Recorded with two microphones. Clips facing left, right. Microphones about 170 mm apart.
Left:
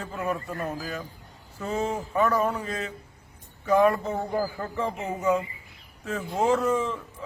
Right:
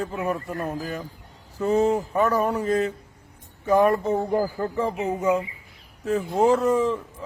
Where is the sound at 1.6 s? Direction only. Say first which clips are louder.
Right 8 dB; 35° right (ahead or behind).